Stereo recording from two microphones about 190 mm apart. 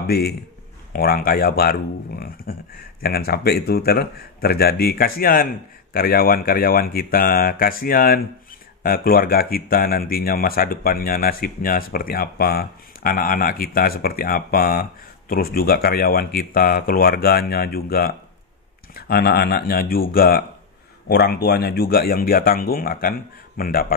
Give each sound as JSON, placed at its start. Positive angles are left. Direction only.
{"t": 0.0, "sound": "speech", "side_deg": 55}